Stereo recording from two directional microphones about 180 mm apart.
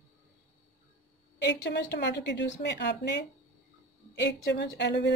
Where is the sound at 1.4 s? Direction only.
70° left (ahead or behind).